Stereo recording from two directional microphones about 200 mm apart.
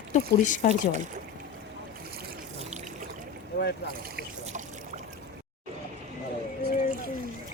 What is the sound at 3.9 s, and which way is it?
Boat, 45° right (ahead or behind).